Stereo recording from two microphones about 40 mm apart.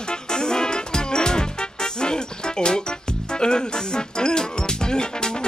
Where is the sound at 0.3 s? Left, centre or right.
Centre.